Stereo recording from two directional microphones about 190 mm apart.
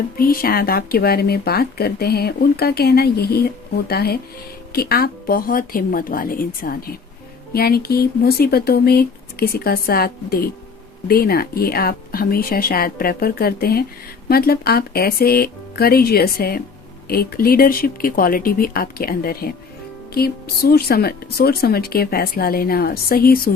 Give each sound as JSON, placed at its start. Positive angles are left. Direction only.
{"t": 0.2, "sound": "speech", "side_deg": 50}